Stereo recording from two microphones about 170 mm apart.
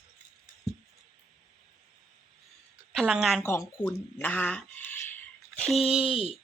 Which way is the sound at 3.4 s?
15° left (ahead or behind).